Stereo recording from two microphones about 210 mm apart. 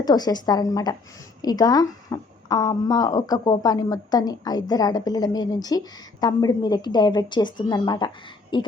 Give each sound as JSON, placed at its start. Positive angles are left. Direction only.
{"t": 0.0, "sound": "a woman's voice", "side_deg": 20}